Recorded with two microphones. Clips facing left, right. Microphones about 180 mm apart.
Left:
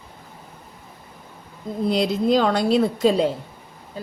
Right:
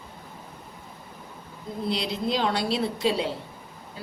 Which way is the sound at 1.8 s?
45° left (ahead or behind).